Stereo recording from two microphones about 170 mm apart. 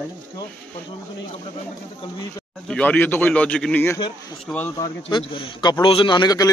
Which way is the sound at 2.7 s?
10° left (ahead or behind).